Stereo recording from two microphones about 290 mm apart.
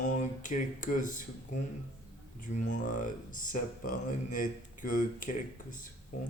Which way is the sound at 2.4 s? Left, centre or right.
Left.